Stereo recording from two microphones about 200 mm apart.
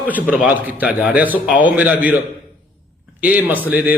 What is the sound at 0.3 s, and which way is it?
A man's voice, 5° right (ahead or behind).